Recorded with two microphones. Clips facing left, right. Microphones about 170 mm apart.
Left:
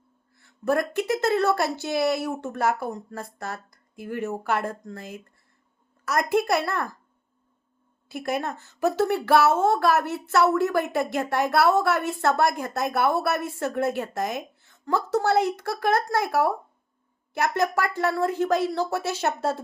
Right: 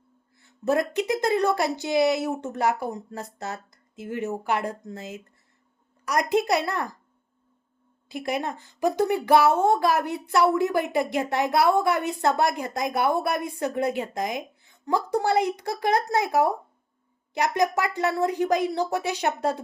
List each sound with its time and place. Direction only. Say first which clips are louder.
0.3 s speech: even; 20° right (ahead or behind)
8.5 s speech: even; 15° right (ahead or behind)